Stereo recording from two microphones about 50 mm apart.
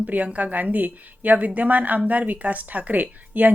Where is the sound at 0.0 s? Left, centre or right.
Right.